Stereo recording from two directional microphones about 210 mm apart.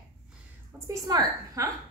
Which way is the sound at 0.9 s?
15° right (ahead or behind).